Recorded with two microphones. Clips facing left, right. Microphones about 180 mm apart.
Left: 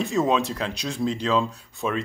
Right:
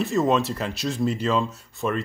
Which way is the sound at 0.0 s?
Centre (ahead or behind).